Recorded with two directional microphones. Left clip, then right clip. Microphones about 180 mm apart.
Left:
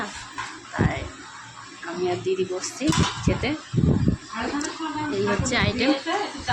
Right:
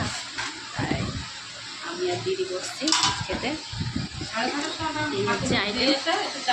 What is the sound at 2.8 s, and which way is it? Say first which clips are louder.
Speech: right 1 dB; 25° left (ahead or behind).